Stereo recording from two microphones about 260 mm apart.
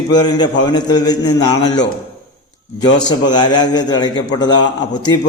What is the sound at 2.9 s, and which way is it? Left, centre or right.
A man's voice, centre.